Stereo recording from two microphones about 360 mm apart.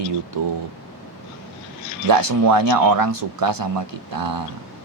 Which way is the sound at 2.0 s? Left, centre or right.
Right.